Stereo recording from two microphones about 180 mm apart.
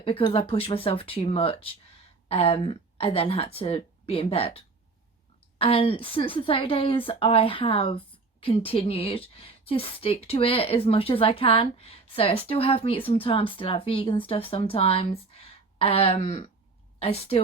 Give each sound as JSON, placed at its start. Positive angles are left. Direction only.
{"t": 0.0, "sound": "a woman's voice", "side_deg": 30}